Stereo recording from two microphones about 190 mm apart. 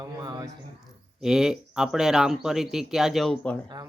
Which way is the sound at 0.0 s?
20° right (ahead or behind).